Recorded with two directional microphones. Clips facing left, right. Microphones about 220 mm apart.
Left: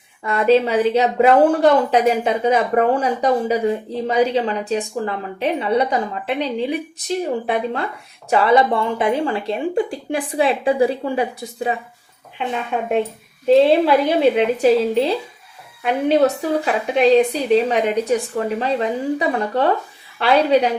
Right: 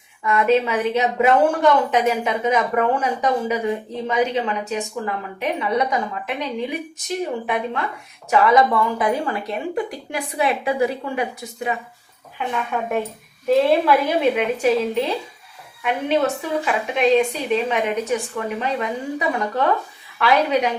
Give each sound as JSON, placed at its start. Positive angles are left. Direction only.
{"t": 0.2, "sound": "a woman's voice", "side_deg": 35}